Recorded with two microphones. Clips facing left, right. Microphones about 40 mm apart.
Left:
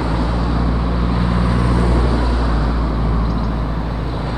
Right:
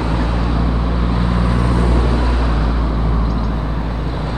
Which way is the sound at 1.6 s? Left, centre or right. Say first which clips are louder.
Even; right.